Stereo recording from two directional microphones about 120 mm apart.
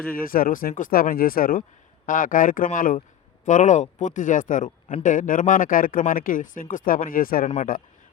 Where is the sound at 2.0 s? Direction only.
90° left.